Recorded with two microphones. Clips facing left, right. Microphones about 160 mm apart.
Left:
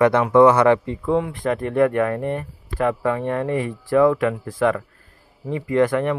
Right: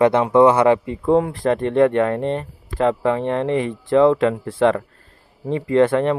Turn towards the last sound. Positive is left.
turn(degrees=-25)  # may be behind; listen again after turning